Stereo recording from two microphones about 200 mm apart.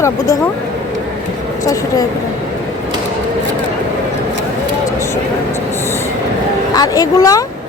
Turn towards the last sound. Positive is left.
turn(degrees=15)  # may be behind; listen again after turning